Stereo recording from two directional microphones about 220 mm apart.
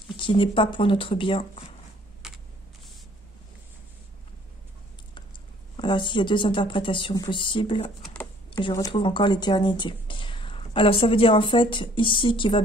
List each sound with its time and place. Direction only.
0.2 s speech: 25° left (ahead or behind)
5.8 s speech: 20° left (ahead or behind)
8.0 s typing: 5° left (ahead or behind)
8.5 s speech: 20° left (ahead or behind)